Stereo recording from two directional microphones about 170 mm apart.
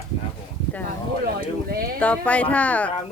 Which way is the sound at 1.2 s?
60° right (ahead or behind).